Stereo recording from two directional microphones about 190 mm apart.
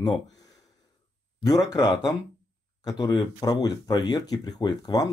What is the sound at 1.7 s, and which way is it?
Speech, 20° left (ahead or behind).